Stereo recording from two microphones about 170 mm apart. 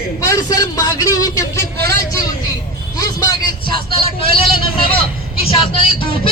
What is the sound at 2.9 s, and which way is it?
Speech, 20° left (ahead or behind).